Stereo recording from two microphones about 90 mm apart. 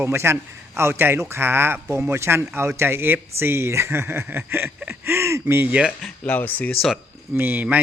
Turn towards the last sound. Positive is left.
turn(degrees=-20)  # may be behind; listen again after turning